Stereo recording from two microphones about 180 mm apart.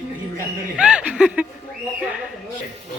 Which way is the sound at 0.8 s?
5° right (ahead or behind).